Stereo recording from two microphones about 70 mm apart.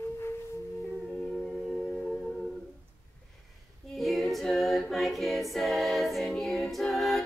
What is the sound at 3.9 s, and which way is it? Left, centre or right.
A capella, centre.